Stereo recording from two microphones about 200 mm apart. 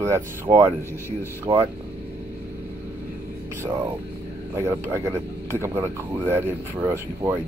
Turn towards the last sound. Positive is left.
turn(degrees=-10)  # may be behind; listen again after turning